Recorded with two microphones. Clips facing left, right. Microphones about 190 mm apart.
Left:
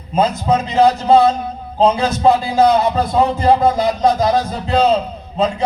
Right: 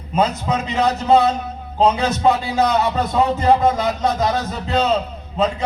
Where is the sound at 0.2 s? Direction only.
35° left (ahead or behind).